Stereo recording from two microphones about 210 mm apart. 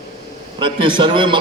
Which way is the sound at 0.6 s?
25° right (ahead or behind).